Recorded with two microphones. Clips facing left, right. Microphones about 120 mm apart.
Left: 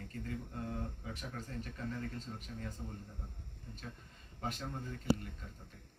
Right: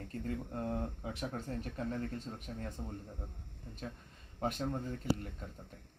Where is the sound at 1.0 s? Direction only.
55° right (ahead or behind).